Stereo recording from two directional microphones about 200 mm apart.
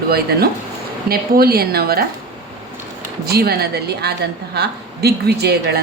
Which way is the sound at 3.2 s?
50° right (ahead or behind).